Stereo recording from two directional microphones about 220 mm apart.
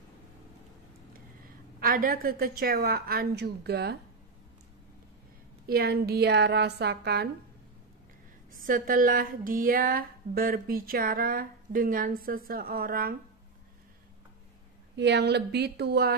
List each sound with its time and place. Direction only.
1.8 s a woman's voice: 40° right (ahead or behind)
5.7 s a woman's voice: 45° right (ahead or behind)
8.5 s speech: 40° right (ahead or behind)
15.0 s a woman's voice: 50° right (ahead or behind)